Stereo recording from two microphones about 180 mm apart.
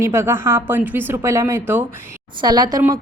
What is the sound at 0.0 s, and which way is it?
A woman's voice, 15° right (ahead or behind).